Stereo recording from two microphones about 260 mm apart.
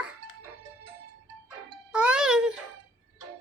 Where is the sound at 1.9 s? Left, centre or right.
Centre.